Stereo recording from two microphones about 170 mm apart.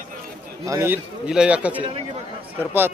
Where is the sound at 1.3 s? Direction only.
5° right (ahead or behind).